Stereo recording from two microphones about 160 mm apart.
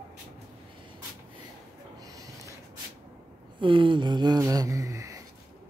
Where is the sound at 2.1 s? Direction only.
20° right (ahead or behind).